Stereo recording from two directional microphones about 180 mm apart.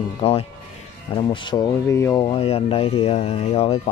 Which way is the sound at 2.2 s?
35° left (ahead or behind).